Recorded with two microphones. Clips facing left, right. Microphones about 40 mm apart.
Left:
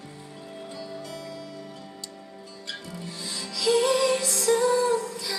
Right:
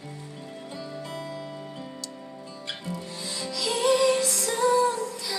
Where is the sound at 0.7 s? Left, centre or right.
Right.